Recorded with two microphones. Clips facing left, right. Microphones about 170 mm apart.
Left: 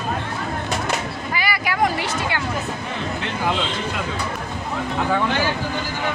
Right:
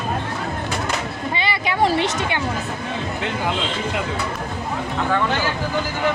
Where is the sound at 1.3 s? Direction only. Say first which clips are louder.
Right 1 dB; 25° right (ahead or behind).